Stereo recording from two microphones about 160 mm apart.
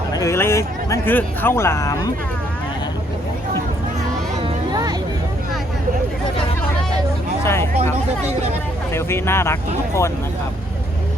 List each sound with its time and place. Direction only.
0.1 s speech: 20° left (ahead or behind)
4.4 s a sound: 25° right (ahead or behind)
7.4 s hubbub: 15° left (ahead or behind)
8.9 s speech: 15° left (ahead or behind)